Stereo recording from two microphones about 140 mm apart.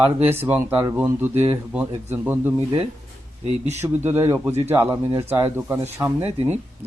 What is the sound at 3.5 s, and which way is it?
Speech, 55° right (ahead or behind).